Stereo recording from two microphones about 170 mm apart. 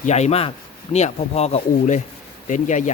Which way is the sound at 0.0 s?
40° left (ahead or behind).